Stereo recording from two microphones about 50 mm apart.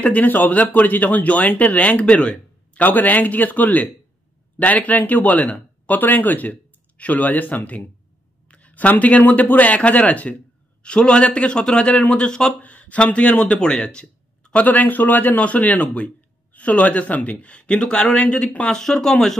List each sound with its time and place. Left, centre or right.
0.0 s a man's voice: left; by 12.0 s centre
12.0 s speech: left
12.3 s speech: centre
12.6 s a man's voice: left
13.6 s a man's voice: centre